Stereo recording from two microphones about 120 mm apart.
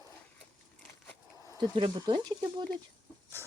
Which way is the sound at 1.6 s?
40° right (ahead or behind).